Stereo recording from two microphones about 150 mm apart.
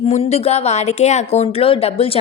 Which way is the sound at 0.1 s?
45° left (ahead or behind).